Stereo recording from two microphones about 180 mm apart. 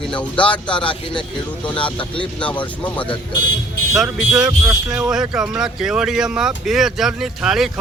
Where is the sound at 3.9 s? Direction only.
5° right (ahead or behind).